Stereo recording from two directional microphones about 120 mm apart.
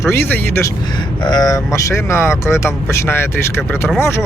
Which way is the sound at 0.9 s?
35° left (ahead or behind).